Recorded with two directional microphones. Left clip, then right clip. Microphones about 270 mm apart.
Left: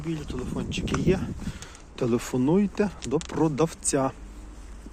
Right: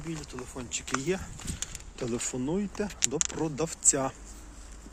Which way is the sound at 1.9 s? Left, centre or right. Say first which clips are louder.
Left 7 dB; centre.